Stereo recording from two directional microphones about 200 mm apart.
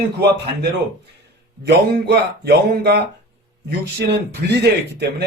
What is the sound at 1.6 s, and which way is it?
Speech, 55° right (ahead or behind).